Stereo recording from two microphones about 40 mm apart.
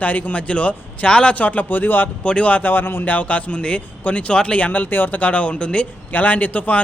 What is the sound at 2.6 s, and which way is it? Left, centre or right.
Speech, left.